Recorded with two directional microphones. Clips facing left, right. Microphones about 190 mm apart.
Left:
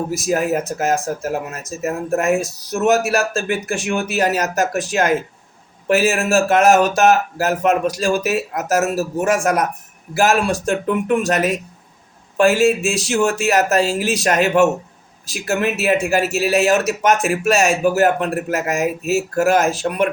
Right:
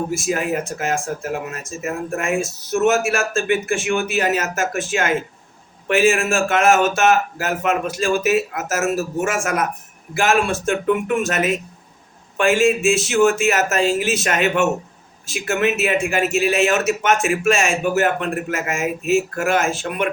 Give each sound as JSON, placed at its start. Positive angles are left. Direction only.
{"t": 0.1, "sound": "a man's voice", "side_deg": 40}